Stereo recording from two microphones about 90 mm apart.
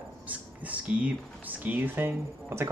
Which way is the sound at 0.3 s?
15° right (ahead or behind).